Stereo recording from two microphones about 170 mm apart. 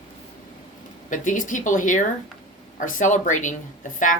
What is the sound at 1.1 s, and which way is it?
Speech, 50° left (ahead or behind).